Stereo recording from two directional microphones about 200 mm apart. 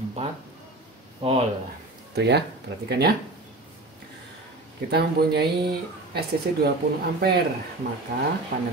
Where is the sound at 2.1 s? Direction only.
55° right (ahead or behind).